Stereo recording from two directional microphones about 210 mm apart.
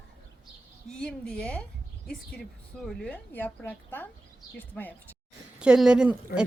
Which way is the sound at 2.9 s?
5° left (ahead or behind).